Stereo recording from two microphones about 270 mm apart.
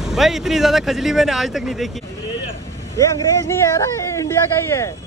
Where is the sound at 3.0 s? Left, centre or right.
Centre.